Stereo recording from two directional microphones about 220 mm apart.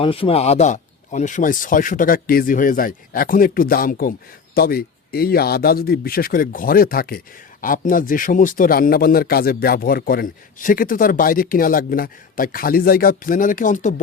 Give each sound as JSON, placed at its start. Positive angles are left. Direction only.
{"t": 0.0, "sound": "speech", "side_deg": 25}